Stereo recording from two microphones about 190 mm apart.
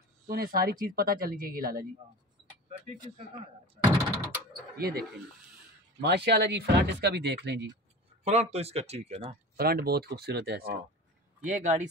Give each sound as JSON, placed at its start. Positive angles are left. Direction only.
{"t": 0.3, "sound": "speech", "side_deg": -50}
{"t": 3.2, "sound": "door", "side_deg": -30}
{"t": 4.7, "sound": "speech", "side_deg": -55}
{"t": 8.2, "sound": "speech", "side_deg": -35}
{"t": 9.6, "sound": "speech", "side_deg": -55}
{"t": 11.4, "sound": "speech", "side_deg": -40}